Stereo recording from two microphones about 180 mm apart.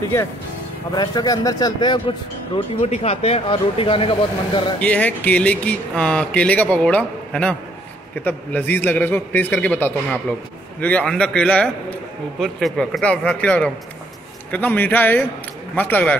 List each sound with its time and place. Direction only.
0.9 s speech: 20° left (ahead or behind)
4.8 s a man's voice: 10° left (ahead or behind)